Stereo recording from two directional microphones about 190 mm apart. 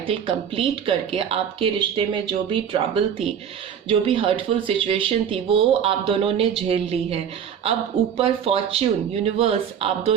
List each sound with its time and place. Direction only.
0.1 s speech: 30° right (ahead or behind)